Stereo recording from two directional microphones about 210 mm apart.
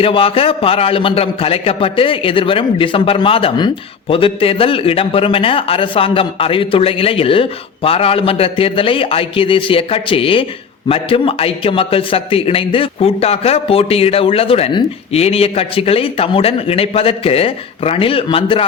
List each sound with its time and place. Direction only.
0.0 s a man's voice: 25° left (ahead or behind)